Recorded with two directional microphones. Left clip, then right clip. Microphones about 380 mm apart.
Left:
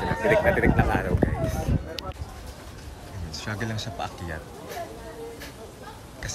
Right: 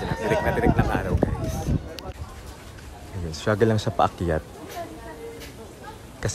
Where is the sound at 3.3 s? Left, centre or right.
Centre.